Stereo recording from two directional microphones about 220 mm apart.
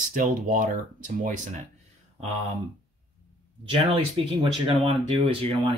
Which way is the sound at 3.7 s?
25° right (ahead or behind).